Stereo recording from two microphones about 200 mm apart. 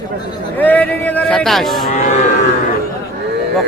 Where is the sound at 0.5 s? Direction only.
10° left (ahead or behind).